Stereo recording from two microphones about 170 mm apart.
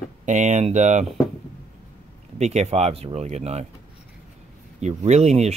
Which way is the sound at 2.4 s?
40° right (ahead or behind).